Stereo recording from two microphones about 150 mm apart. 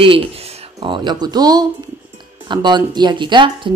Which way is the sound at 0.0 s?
40° right (ahead or behind).